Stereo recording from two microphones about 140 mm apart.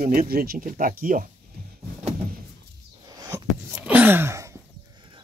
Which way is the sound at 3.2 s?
25° right (ahead or behind).